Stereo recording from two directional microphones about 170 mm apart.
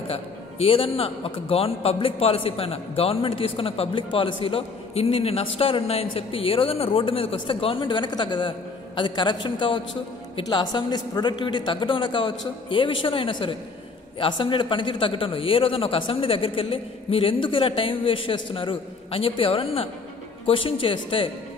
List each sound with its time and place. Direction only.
0.1 s a man's voice: 35° left (ahead or behind)